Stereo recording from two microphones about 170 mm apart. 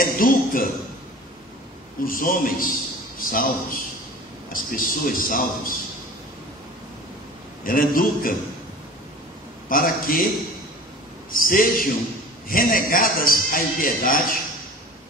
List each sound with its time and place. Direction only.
0.0 s a man's voice: 55° left (ahead or behind)
2.0 s a man's voice: 55° left (ahead or behind)
7.6 s a man's voice: 55° left (ahead or behind)
9.7 s a man's voice: 55° left (ahead or behind)
11.3 s a man's voice: 55° left (ahead or behind)